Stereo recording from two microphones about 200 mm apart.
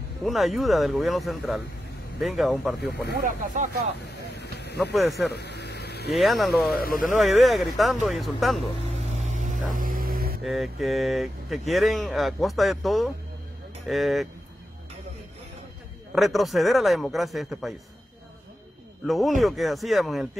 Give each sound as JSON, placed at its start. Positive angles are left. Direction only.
{"t": 0.2, "sound": "speech", "side_deg": 0}
{"t": 3.2, "sound": "speech", "side_deg": -40}
{"t": 4.4, "sound": "vehicle", "side_deg": 55}
{"t": 5.3, "sound": "a sound", "side_deg": 55}
{"t": 6.1, "sound": "speech", "side_deg": 0}
{"t": 6.8, "sound": "speech", "side_deg": 45}
{"t": 7.2, "sound": "speech", "side_deg": 0}
{"t": 9.2, "sound": "vehicle", "side_deg": -40}
{"t": 9.8, "sound": "a sound", "side_deg": -45}
{"t": 10.4, "sound": "speech", "side_deg": 0}
{"t": 16.2, "sound": "speech", "side_deg": 0}
{"t": 19.0, "sound": "speech", "side_deg": 0}